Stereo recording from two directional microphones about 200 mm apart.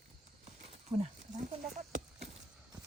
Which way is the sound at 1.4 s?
35° right (ahead or behind).